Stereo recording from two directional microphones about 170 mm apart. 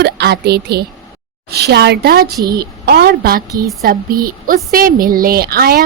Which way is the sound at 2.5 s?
70° right (ahead or behind).